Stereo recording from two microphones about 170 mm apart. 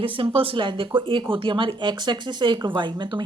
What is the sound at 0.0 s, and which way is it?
Speech, 30° right (ahead or behind).